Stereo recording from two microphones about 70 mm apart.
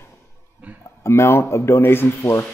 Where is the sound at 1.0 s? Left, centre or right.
Left.